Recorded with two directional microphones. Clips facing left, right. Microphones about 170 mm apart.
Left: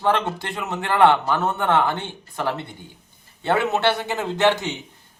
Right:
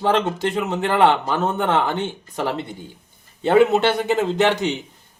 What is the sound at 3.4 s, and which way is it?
Speech, 15° right (ahead or behind).